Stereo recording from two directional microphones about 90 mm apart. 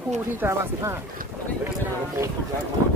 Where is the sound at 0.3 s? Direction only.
25° right (ahead or behind).